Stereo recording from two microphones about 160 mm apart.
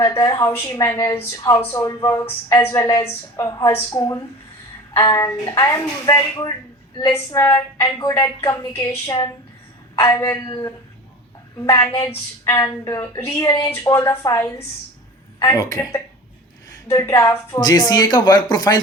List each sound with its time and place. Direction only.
0.0 s a woman's voice: 25° left (ahead or behind)
8.9 s speech: 30° left (ahead or behind)
12.5 s a woman's voice: 20° left (ahead or behind)